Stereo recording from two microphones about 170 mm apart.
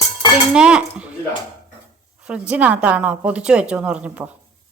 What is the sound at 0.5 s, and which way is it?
Speech, 5° right (ahead or behind).